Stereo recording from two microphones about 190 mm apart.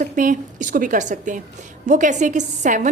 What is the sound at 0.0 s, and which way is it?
A woman's voice, 45° right (ahead or behind).